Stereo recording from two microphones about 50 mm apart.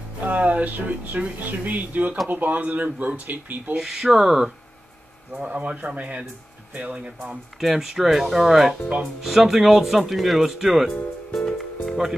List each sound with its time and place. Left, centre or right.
0.2 s speech: right
3.7 s speech: centre
5.3 s speech: right
7.6 s speech: centre
8.8 s speech: centre
9.2 s speech: centre
11.3 s music: centre